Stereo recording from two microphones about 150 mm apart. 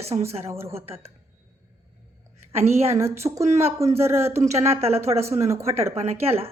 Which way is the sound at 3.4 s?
45° right (ahead or behind).